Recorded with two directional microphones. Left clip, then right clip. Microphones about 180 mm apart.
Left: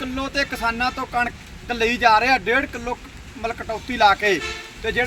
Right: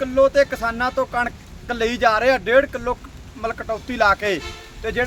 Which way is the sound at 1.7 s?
35° right (ahead or behind).